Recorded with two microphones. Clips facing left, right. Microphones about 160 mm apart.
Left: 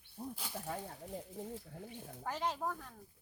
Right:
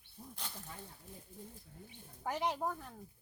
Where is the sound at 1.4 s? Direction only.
90° left.